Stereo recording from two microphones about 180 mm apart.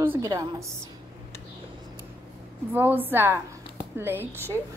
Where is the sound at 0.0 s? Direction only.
15° right (ahead or behind).